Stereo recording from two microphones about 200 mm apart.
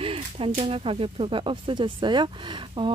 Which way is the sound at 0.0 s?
25° right (ahead or behind).